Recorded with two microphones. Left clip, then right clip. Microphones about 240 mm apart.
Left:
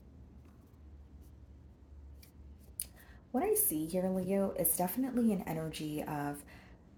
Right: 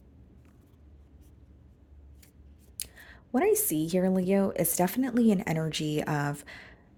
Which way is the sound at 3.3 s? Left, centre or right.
Right.